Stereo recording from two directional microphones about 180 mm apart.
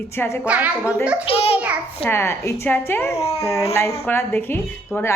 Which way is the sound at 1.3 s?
30° left (ahead or behind).